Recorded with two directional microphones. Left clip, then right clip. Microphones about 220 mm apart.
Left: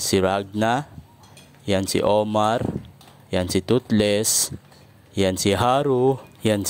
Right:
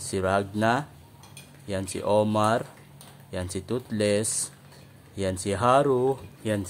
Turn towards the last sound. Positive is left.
turn(degrees=40)  # may be behind; listen again after turning